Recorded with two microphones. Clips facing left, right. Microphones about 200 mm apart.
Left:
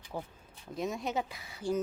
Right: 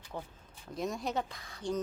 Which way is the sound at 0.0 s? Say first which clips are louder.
Left 2 dB; 10° left (ahead or behind).